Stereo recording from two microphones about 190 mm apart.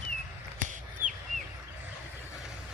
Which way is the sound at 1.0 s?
10° right (ahead or behind).